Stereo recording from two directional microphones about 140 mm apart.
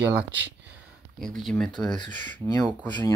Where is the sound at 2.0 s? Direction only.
35° left (ahead or behind).